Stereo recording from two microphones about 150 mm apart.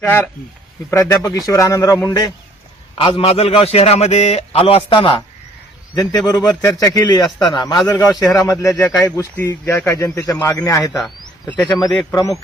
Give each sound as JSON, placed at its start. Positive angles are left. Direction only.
{"t": 0.0, "sound": "a man's voice", "side_deg": 15}
{"t": 3.0, "sound": "a man's voice", "side_deg": 40}
{"t": 11.8, "sound": "speech", "side_deg": 0}
{"t": 12.1, "sound": "a man's voice", "side_deg": 20}